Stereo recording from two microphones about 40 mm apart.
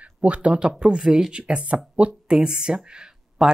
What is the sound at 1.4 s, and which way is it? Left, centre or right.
Speech, right.